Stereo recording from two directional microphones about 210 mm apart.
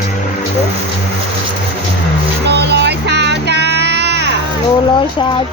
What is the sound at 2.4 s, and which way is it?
Child singing, 55° right (ahead or behind).